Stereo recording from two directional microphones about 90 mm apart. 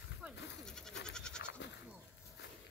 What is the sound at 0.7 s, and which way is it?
Goat, 5° left (ahead or behind).